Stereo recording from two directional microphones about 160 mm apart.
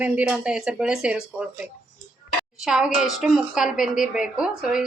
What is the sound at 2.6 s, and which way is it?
A woman's voice, 5° right (ahead or behind).